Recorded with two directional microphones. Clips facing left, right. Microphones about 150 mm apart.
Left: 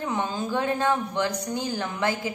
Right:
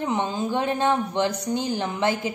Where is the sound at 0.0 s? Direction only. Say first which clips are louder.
Right 3 dB; 20° right (ahead or behind).